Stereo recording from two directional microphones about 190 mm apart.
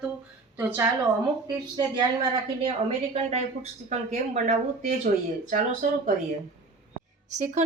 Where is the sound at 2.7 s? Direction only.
35° right (ahead or behind).